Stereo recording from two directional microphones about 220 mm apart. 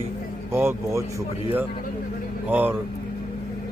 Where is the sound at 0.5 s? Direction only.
10° right (ahead or behind).